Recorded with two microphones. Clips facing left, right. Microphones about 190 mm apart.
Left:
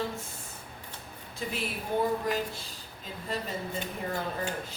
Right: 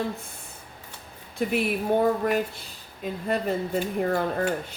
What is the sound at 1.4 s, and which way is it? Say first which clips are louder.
Speech: right 10 dB; 60° right (ahead or behind).